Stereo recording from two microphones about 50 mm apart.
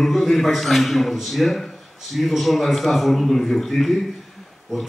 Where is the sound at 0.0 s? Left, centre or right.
Centre.